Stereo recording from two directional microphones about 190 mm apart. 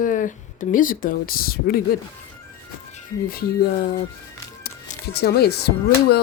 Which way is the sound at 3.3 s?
50° left (ahead or behind).